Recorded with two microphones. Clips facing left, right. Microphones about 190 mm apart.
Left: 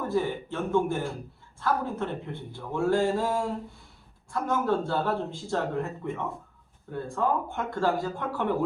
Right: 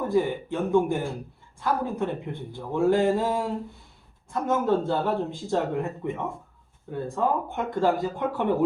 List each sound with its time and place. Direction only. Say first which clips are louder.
0.1 s speech: right 4 dB; 15° right (ahead or behind)